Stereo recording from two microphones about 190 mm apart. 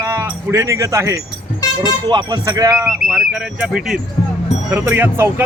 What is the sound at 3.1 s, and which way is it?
Speech, 5° right (ahead or behind).